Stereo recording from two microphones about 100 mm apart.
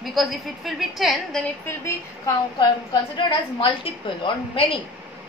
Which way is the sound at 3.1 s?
55° left (ahead or behind).